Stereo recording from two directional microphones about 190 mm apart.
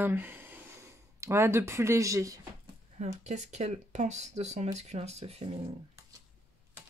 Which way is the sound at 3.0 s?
35° right (ahead or behind).